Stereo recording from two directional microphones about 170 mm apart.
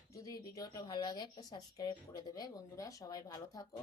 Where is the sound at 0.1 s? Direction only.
20° left (ahead or behind).